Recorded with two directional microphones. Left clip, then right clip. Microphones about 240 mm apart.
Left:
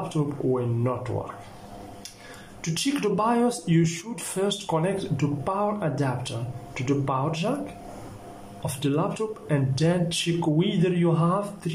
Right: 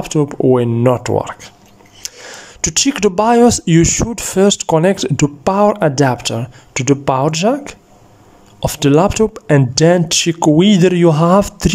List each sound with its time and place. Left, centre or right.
0.1 s speech: right